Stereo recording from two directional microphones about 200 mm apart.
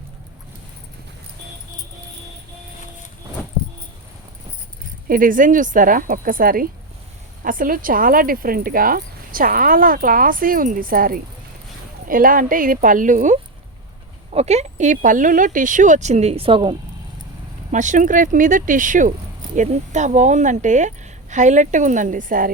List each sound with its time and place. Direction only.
5.0 s speech: 45° right (ahead or behind)
14.3 s speech: 35° right (ahead or behind)
17.7 s speech: 40° right (ahead or behind)